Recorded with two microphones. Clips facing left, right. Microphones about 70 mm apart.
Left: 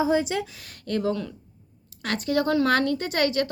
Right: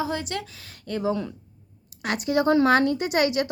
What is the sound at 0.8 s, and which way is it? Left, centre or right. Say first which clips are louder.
Speech: even; centre.